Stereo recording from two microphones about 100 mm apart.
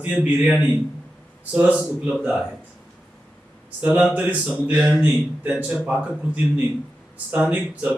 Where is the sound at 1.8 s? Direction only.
10° right (ahead or behind).